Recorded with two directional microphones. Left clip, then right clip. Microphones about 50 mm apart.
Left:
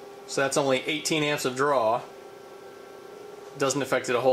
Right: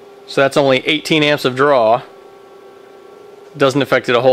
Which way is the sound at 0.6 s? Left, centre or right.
Centre.